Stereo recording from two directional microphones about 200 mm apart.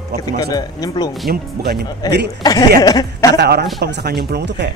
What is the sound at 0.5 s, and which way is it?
Speech, 20° left (ahead or behind).